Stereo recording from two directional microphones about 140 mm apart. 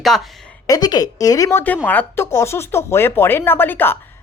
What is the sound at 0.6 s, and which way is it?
Speech, 25° left (ahead or behind).